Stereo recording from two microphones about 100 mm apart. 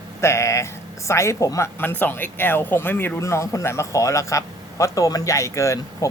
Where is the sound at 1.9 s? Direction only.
20° left (ahead or behind).